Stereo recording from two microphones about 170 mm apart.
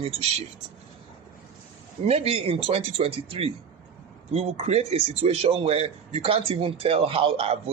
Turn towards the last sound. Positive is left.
turn(degrees=-35)  # may be behind; listen again after turning